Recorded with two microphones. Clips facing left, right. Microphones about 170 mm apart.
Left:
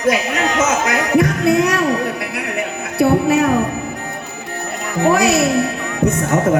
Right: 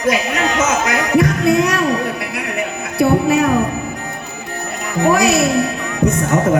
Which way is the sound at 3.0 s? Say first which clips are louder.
Even; 25° left (ahead or behind).